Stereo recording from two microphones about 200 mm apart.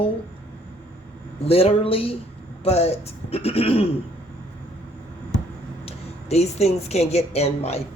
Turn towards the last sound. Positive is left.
turn(degrees=30)  # may be behind; listen again after turning